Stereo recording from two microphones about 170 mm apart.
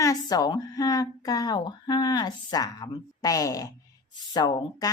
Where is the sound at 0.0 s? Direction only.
20° left (ahead or behind).